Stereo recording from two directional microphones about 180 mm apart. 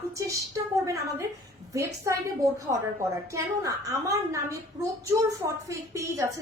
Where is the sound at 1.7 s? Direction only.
15° right (ahead or behind).